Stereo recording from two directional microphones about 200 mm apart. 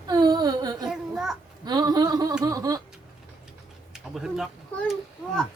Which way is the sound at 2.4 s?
20° right (ahead or behind).